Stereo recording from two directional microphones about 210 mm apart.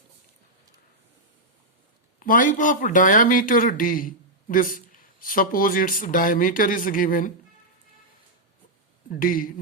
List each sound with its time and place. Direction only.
2.1 s speech: 40° left (ahead or behind)
9.0 s speech: 40° left (ahead or behind)